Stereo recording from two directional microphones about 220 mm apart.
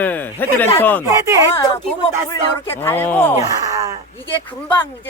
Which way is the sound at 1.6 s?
15° left (ahead or behind).